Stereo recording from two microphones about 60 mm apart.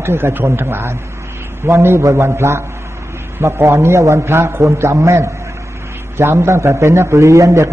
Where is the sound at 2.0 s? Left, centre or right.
Right.